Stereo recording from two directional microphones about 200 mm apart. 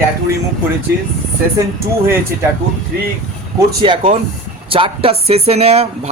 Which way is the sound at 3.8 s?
35° right (ahead or behind).